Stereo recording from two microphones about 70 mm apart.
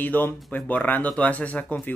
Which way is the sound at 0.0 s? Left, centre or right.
Left.